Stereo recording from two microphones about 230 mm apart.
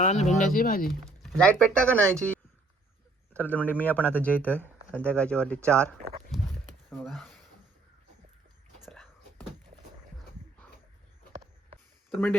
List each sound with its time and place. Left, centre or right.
0.0 s speech: left
1.2 s speech: centre
7.0 s speech: centre
8.8 s whispering: centre
12.1 s speech: centre